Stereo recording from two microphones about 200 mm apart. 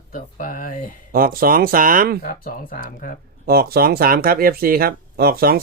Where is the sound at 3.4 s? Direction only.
50° right (ahead or behind).